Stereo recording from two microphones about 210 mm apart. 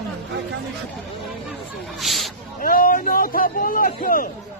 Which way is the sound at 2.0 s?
Centre (ahead or behind).